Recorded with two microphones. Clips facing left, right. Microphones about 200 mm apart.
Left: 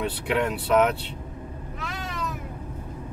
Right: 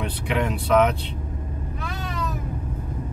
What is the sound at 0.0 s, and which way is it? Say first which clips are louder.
Speech: even; centre (ahead or behind).